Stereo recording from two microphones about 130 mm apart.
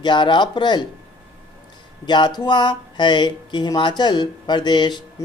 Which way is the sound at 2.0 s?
35° left (ahead or behind).